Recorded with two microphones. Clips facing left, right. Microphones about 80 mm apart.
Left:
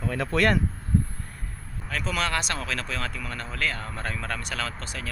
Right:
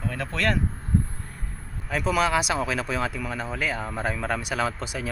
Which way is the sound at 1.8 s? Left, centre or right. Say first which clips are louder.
Right 5 dB; centre.